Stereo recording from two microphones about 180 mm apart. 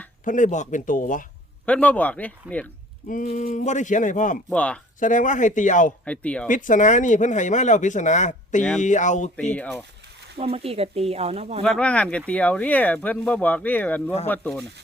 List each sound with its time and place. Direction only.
0.3 s speech: 45° left (ahead or behind)
1.6 s speech: 5° left (ahead or behind)
3.1 s speech: 50° left (ahead or behind)
4.4 s speech: 5° left (ahead or behind)
4.9 s speech: 45° left (ahead or behind)
6.1 s speech: 5° left (ahead or behind)
6.5 s speech: 45° left (ahead or behind)
9.5 s speech: 10° left (ahead or behind)
10.3 s speech: 35° right (ahead or behind)
11.6 s speech: 5° left (ahead or behind)